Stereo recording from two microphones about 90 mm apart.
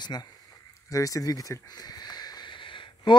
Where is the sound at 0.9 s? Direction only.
40° left (ahead or behind).